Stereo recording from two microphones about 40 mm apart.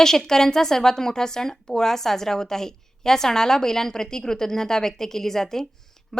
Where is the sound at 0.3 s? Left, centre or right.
Centre.